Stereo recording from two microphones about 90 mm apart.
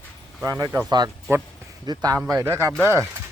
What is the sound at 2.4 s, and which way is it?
Speech, 40° right (ahead or behind).